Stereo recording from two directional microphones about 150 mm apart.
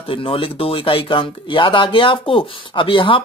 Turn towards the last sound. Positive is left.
turn(degrees=35)  # may be behind; listen again after turning